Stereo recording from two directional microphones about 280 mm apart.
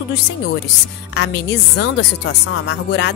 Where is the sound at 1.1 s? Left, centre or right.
Left.